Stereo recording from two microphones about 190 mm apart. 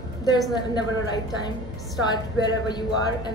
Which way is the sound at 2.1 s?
20° left (ahead or behind).